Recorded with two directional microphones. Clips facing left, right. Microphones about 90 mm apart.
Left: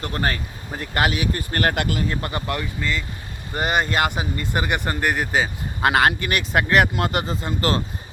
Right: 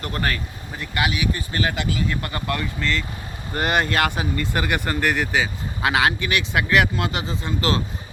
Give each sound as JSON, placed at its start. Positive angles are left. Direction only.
{"t": 0.0, "sound": "speech", "side_deg": 30}
{"t": 0.8, "sound": "speech", "side_deg": 45}
{"t": 2.0, "sound": "speech", "side_deg": 25}